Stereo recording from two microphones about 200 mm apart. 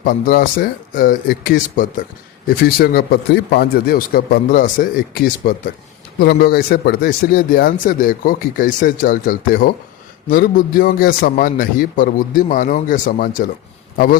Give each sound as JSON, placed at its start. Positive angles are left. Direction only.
{"t": 0.0, "sound": "speech", "side_deg": 45}